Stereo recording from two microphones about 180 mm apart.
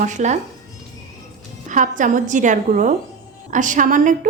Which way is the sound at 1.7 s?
45° right (ahead or behind).